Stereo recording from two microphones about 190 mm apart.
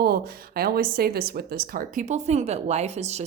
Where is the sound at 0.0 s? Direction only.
55° right (ahead or behind).